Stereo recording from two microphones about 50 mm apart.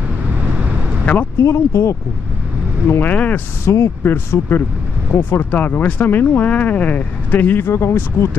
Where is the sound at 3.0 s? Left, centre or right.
Left.